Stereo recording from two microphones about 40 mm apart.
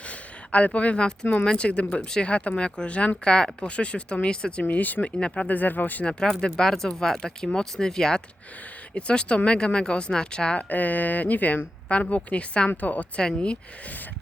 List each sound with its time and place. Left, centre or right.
0.1 s a sound: left
1.5 s speech: left
2.2 s speech: left
4.7 s speech: left
6.4 s speech: centre
9.0 s speech: left
10.6 s speech: left
11.9 s speech: left
13.1 s speech: left